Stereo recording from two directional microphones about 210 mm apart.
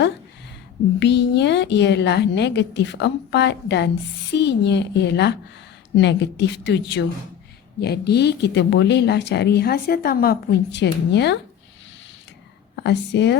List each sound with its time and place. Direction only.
0.9 s a woman's voice: 55° left (ahead or behind)
12.8 s a woman's voice: 55° left (ahead or behind)